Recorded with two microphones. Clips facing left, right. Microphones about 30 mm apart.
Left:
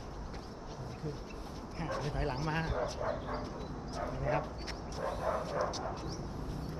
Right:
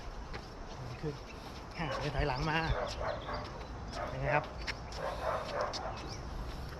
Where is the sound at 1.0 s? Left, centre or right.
Right.